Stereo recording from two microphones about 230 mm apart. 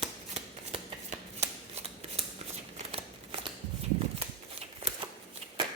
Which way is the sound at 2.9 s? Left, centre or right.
Right.